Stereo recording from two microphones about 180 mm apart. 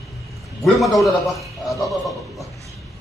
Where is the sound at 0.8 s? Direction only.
Centre (ahead or behind).